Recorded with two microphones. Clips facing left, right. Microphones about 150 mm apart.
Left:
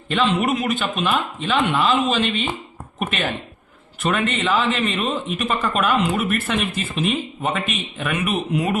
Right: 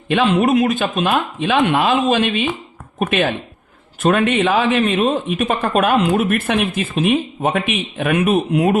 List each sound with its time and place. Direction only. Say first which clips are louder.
0.1 s a man's voice: right 4 dB; 55° right (ahead or behind)
0.4 s a woman's voice: right 6 dB; 45° right (ahead or behind)